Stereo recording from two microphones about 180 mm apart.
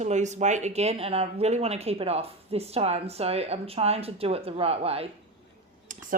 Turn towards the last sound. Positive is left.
turn(degrees=-35)  # may be behind; listen again after turning